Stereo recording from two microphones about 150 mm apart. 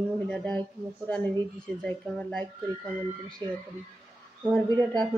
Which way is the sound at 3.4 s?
30° right (ahead or behind).